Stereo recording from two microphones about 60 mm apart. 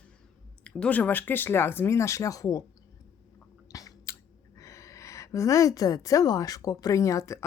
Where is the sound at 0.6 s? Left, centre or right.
Centre.